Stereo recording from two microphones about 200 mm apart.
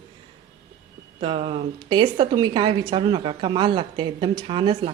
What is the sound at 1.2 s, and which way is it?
A woman's voice, 25° right (ahead or behind).